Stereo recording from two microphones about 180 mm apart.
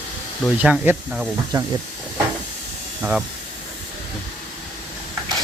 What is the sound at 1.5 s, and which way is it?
Speech, 25° right (ahead or behind).